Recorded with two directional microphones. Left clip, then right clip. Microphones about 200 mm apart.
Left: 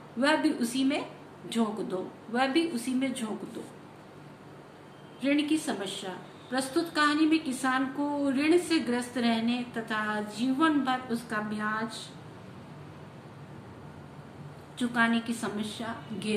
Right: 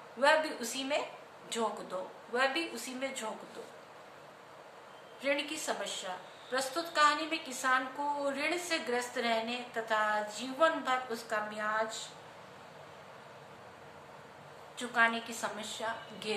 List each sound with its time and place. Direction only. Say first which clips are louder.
0.2 s a woman's voice: left 2 dB; centre (ahead or behind)
5.2 s a woman's voice: left 6 dB; centre (ahead or behind)
14.8 s a woman's voice: left 2 dB; centre (ahead or behind)